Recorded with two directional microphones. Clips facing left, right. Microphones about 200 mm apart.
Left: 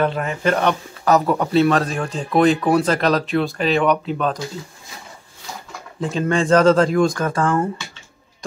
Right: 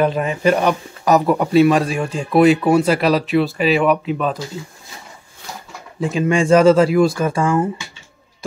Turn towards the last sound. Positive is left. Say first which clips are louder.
# right 2 dB
turn(degrees=-5)  # may be behind; listen again after turning